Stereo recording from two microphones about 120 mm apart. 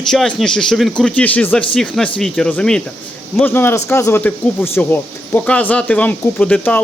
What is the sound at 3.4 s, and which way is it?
A man's voice, 20° left (ahead or behind).